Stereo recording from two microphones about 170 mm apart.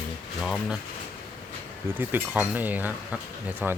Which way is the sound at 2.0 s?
10° right (ahead or behind).